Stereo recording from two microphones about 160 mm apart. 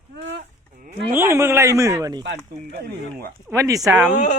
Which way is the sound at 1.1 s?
15° right (ahead or behind).